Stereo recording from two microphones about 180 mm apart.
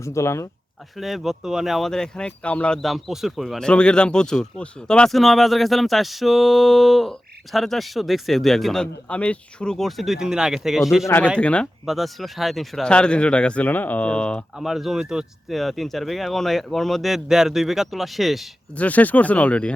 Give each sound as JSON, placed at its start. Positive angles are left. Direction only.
{"t": 0.0, "sound": "speech", "side_deg": 15}
{"t": 0.9, "sound": "speech", "side_deg": 0}